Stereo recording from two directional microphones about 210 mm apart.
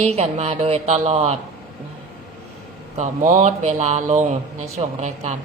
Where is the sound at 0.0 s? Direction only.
30° right (ahead or behind).